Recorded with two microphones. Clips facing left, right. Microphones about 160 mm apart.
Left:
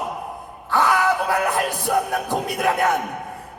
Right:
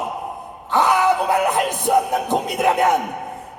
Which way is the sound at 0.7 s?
20° right (ahead or behind).